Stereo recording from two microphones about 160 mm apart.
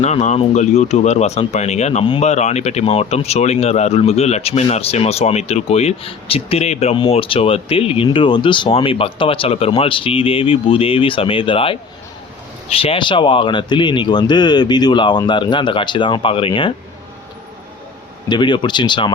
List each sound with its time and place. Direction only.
0.0 s speech: 45° left (ahead or behind)
18.3 s speech: 30° left (ahead or behind)